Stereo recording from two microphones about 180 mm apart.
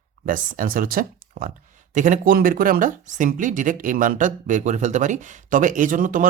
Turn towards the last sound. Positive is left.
turn(degrees=-50)  # may be behind; listen again after turning